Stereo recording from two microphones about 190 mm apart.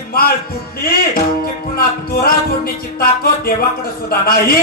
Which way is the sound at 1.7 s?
50° left (ahead or behind).